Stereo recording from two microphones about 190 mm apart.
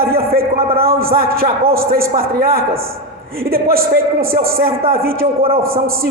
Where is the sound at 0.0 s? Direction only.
55° right (ahead or behind).